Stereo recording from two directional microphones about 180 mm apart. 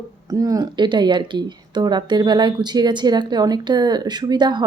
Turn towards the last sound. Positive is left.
turn(degrees=-25)  # may be behind; listen again after turning